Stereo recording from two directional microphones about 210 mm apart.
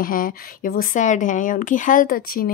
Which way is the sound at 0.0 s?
40° left (ahead or behind).